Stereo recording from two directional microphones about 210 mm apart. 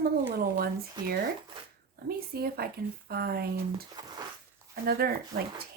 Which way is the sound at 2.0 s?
45° right (ahead or behind).